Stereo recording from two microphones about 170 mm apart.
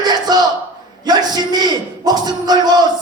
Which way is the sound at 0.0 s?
25° right (ahead or behind).